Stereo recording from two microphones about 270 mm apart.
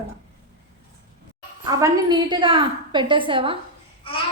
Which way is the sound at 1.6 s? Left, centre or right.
Centre.